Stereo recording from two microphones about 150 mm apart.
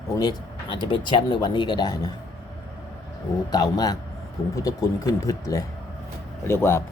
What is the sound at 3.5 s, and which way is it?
Speech, 25° left (ahead or behind).